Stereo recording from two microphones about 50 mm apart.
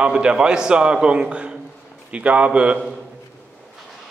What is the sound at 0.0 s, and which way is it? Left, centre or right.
A man's voice, right.